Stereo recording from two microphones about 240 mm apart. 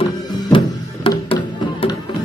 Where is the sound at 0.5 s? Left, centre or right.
Left.